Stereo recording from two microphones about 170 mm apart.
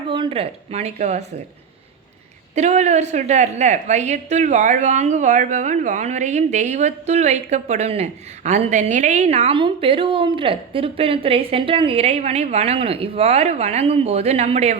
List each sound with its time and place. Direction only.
0.1 s a woman's voice: 30° right (ahead or behind)
2.6 s a woman's voice: 40° right (ahead or behind)